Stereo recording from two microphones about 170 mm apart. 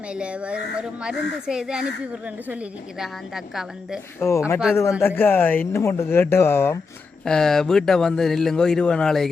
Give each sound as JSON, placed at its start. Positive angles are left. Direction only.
{"t": 0.1, "sound": "speech", "side_deg": -5}
{"t": 3.0, "sound": "speech", "side_deg": 0}
{"t": 4.2, "sound": "speech", "side_deg": 15}
{"t": 7.3, "sound": "speech", "side_deg": 5}